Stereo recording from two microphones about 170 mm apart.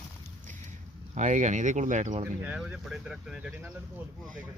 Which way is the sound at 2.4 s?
5° right (ahead or behind).